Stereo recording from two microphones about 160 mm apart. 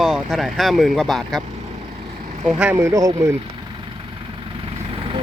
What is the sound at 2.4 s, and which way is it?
Speech, 5° right (ahead or behind).